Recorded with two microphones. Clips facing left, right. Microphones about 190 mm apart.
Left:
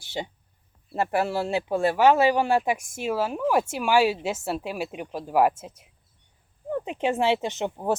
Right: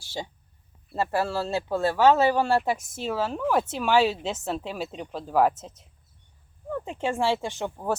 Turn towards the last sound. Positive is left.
turn(degrees=20)  # may be behind; listen again after turning